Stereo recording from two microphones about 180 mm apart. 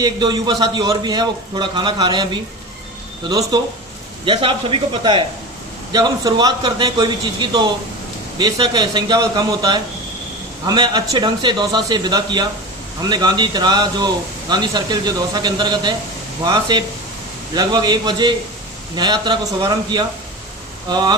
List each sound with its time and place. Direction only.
0.0 s a man's voice: 25° right (ahead or behind)